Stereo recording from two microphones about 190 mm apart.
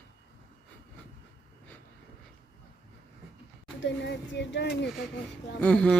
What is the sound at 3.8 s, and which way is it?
Speech, 65° left (ahead or behind).